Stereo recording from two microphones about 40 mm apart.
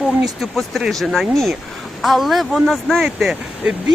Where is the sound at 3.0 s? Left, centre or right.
Centre.